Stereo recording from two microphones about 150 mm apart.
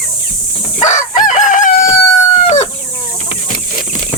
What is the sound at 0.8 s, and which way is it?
Chicken, 55° left (ahead or behind).